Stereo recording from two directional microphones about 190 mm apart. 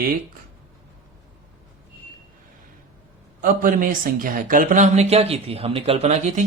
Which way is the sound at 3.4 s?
45° right (ahead or behind).